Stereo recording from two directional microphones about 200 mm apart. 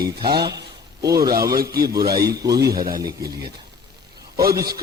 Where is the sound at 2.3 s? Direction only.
15° right (ahead or behind).